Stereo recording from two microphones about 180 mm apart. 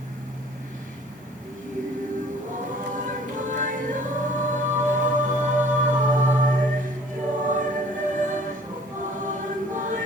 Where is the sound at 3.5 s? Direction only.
45° right (ahead or behind).